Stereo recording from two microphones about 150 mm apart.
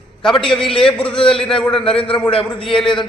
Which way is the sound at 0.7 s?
5° left (ahead or behind).